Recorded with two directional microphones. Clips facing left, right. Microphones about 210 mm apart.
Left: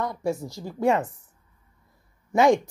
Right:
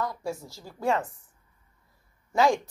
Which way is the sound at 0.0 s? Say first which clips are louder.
Left 5 dB; 20° left (ahead or behind).